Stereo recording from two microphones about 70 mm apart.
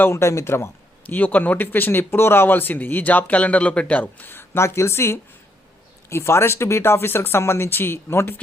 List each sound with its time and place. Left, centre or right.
0.0 s speech: left
1.0 s speech: left